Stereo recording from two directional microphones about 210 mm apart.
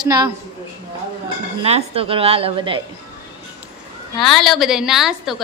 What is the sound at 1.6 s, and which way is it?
A woman's voice, 30° right (ahead or behind).